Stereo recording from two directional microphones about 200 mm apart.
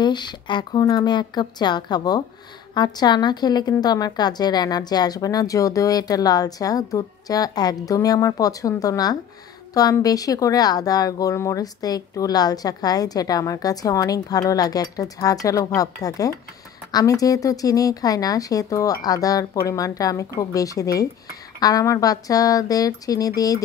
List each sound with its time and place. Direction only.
0.0 s a woman's voice: 20° left (ahead or behind)